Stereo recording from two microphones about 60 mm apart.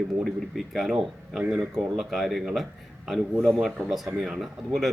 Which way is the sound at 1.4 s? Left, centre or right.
Centre.